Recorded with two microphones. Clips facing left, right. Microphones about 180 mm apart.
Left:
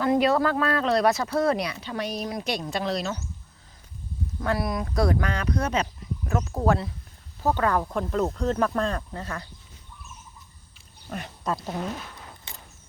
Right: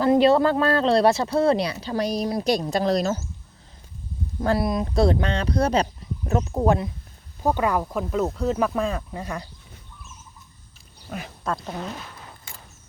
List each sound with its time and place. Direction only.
0.0 s speech: 30° right (ahead or behind)
4.4 s speech: 25° right (ahead or behind)
6.2 s speech: 20° right (ahead or behind)
11.1 s speech: centre (ahead or behind)